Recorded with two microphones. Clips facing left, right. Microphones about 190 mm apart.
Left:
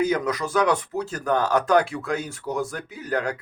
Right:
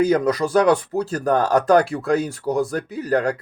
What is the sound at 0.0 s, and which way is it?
Speech, 35° right (ahead or behind).